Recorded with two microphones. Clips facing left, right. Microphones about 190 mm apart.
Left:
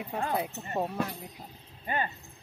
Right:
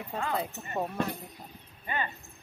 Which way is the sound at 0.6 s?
30° left (ahead or behind).